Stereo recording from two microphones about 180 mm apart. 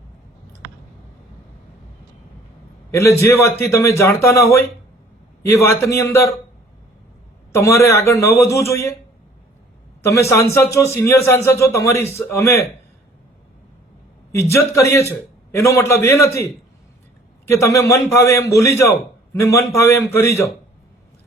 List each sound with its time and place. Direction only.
2.9 s a man's voice: 15° left (ahead or behind)
7.5 s a man's voice: 15° left (ahead or behind)
10.0 s a man's voice: 15° left (ahead or behind)
14.3 s a man's voice: 15° left (ahead or behind)